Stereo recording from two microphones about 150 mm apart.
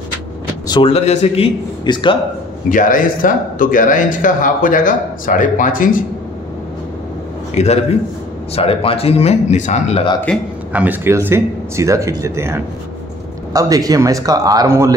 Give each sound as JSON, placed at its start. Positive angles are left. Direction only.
{"t": 0.7, "sound": "a man's voice", "side_deg": 35}
{"t": 2.7, "sound": "speech", "side_deg": 65}
{"t": 7.5, "sound": "speech", "side_deg": 45}
{"t": 10.3, "sound": "a man's voice", "side_deg": 5}
{"t": 10.7, "sound": "a man's voice", "side_deg": -10}